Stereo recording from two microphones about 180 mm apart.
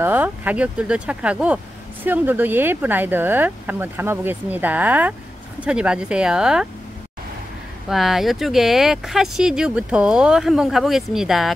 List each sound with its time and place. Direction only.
0.0 s speech: 10° right (ahead or behind)
7.9 s speech: centre (ahead or behind)